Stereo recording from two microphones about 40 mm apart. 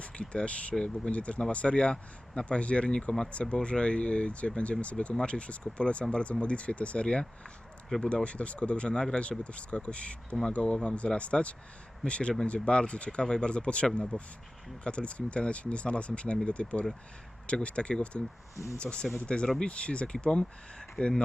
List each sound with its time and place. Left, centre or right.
0.0 s speech: left
2.9 s speech: centre
3.5 s speech: left
7.9 s speech: centre
8.1 s speech: left
20.7 s speech: centre